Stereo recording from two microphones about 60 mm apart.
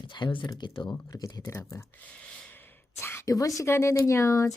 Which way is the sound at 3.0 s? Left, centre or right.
Left.